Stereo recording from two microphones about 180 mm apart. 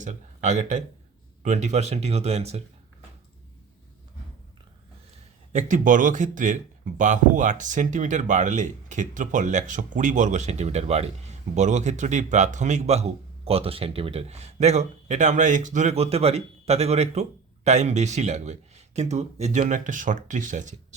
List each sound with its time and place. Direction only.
0.0 s speech: 40° right (ahead or behind)
5.5 s speech: 45° right (ahead or behind)